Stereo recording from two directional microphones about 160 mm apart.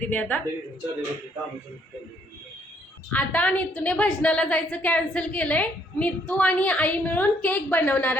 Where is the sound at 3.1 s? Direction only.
10° left (ahead or behind).